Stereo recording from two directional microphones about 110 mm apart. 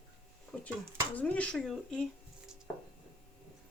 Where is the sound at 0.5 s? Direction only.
10° left (ahead or behind).